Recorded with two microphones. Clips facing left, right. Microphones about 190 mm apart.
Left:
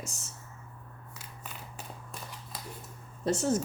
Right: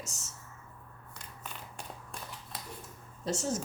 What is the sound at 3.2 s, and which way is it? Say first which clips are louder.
Speech: left 5 dB; 55° left (ahead or behind).